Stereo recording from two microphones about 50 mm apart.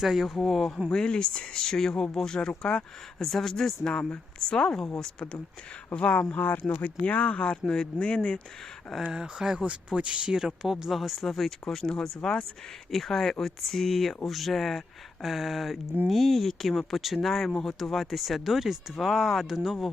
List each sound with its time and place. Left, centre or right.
0.0 s speech: centre
0.3 s speech: centre
0.9 s speech: centre
5.9 s speech: left
6.3 s speech: left; by 8.4 s centre
9.0 s speech: centre